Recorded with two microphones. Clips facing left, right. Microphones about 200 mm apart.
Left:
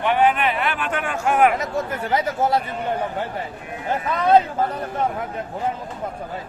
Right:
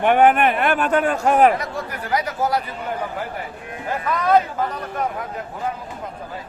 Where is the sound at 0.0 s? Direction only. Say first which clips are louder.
Right 4 dB; 50° right (ahead or behind); by 1.5 s 35° right (ahead or behind).